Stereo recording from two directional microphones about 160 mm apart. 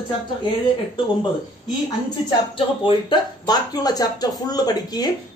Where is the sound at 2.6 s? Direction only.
30° left (ahead or behind).